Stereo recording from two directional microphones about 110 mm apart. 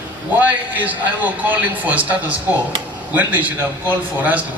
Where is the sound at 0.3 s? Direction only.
15° right (ahead or behind).